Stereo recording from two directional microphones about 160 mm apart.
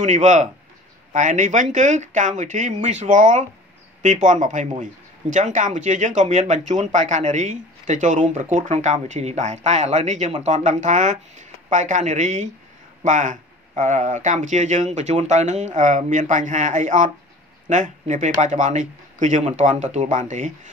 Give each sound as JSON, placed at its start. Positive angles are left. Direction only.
{"t": 0.0, "sound": "speech", "side_deg": -50}